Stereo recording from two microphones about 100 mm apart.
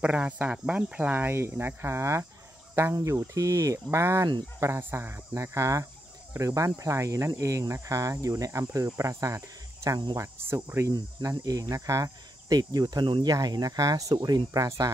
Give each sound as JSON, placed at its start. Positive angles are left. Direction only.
{"t": 0.0, "sound": "speech", "side_deg": -10}
{"t": 9.8, "sound": "speech", "side_deg": -45}
{"t": 10.1, "sound": "speech", "side_deg": -25}
{"t": 10.9, "sound": "speech", "side_deg": -40}